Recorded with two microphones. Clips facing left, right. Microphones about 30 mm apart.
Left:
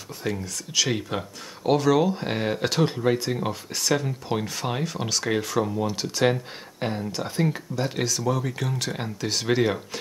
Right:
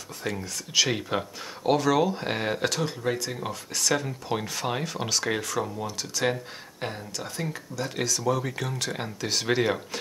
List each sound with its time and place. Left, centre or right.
0.2 s speech: centre
2.7 s speech: centre
3.9 s speech: centre
5.4 s speech: centre
7.1 s speech: left
7.9 s speech: centre